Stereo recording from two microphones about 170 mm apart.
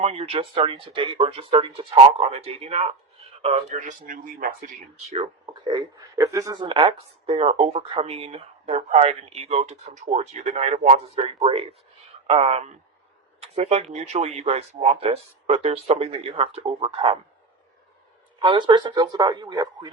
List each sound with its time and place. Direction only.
0.0 s speech: 35° right (ahead or behind)
5.6 s speech: 20° right (ahead or behind)
18.4 s speech: 25° right (ahead or behind)